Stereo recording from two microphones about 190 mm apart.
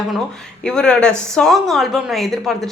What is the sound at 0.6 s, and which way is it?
A woman's voice, 5° left (ahead or behind).